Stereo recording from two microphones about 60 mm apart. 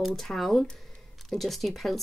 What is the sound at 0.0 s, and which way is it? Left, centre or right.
Speech, centre.